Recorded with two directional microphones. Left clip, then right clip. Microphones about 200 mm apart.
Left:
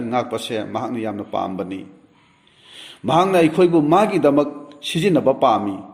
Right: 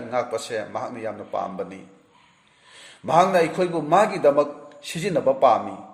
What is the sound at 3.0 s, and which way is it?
Speech, 30° left (ahead or behind).